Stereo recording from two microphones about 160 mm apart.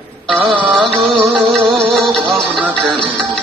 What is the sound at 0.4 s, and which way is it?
Music, 35° right (ahead or behind).